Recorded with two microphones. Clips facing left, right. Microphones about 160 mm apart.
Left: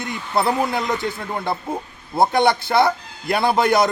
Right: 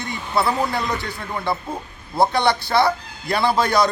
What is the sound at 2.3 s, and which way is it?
Speech, 50° left (ahead or behind).